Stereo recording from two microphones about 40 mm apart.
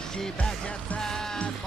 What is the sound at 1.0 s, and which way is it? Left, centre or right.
Music, centre.